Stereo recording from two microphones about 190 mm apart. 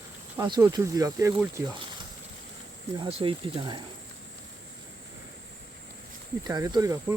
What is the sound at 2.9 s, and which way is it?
Speech, 25° right (ahead or behind).